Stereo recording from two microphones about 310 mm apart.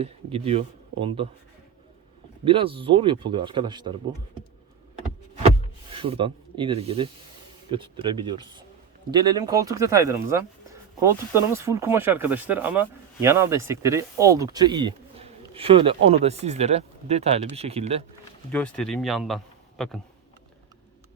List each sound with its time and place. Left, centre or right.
0.0 s speech: centre
2.4 s speech: centre
5.9 s speech: centre
18.5 s speech: centre